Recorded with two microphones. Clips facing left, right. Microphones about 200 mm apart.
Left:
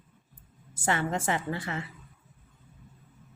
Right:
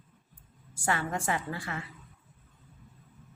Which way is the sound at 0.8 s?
20° left (ahead or behind).